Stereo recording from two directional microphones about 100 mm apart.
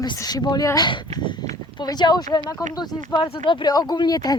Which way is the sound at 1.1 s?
50° left (ahead or behind).